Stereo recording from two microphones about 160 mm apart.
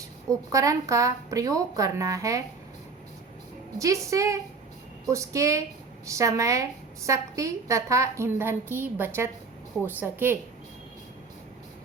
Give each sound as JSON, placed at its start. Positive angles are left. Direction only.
{"t": 0.3, "sound": "a woman's voice", "side_deg": -20}
{"t": 3.8, "sound": "a woman's voice", "side_deg": -20}